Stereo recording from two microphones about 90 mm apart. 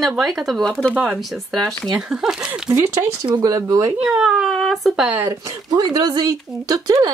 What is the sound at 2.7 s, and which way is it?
Speech, 30° right (ahead or behind).